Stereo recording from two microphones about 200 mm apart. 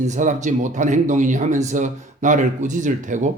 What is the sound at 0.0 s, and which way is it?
Speech, 40° right (ahead or behind).